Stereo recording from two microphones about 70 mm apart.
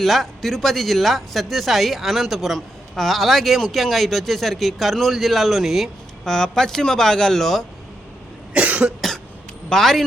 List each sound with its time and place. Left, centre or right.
0.0 s speech: centre
8.5 s cough: centre
9.0 s cough: centre
9.6 s speech: centre